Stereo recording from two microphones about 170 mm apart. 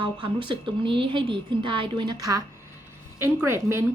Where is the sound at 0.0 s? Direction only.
30° right (ahead or behind).